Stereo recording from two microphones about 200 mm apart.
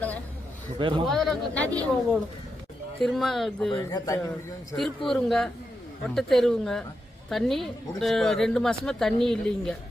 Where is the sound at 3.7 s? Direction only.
20° left (ahead or behind).